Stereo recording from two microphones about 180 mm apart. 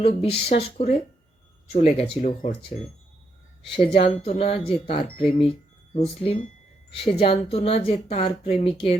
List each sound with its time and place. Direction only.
0.0 s speech: 30° left (ahead or behind)
3.9 s speech: 35° left (ahead or behind)